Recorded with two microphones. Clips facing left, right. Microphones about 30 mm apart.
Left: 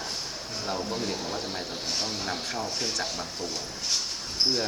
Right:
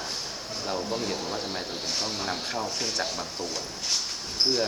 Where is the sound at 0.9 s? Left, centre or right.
Centre.